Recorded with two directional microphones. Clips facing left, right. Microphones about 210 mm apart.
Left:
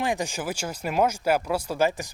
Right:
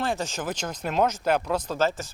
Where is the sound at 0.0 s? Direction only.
15° left (ahead or behind).